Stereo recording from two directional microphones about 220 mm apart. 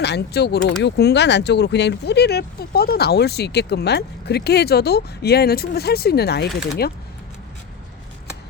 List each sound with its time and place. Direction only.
0.0 s speech: 50° left (ahead or behind)